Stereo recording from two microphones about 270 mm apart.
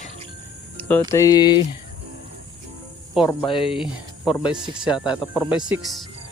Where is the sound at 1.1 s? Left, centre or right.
Centre.